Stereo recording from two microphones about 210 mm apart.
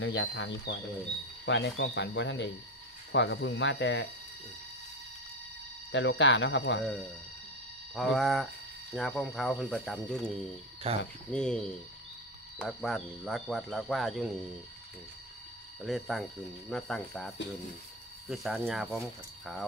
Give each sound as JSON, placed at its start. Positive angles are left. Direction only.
{"t": 0.0, "sound": "speech", "side_deg": 60}
{"t": 5.9, "sound": "speech", "side_deg": 60}
{"t": 7.9, "sound": "speech", "side_deg": 0}
{"t": 10.8, "sound": "speech", "side_deg": -30}
{"t": 11.3, "sound": "speech", "side_deg": 5}
{"t": 15.8, "sound": "speech", "side_deg": 0}
{"t": 18.3, "sound": "speech", "side_deg": 0}